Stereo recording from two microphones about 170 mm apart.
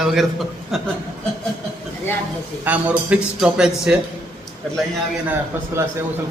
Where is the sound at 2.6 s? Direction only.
10° right (ahead or behind).